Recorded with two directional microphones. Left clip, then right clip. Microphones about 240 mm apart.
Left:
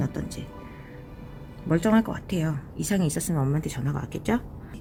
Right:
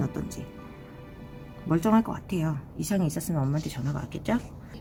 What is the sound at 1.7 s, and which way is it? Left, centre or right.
Speech, centre.